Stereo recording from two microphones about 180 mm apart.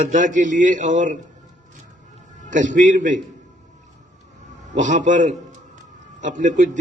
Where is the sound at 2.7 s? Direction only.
45° right (ahead or behind).